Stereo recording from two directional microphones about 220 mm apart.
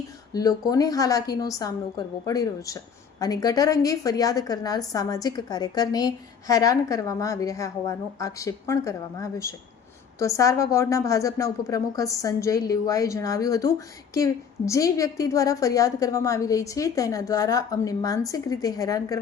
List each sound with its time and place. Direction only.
0.3 s a woman's voice: 15° left (ahead or behind)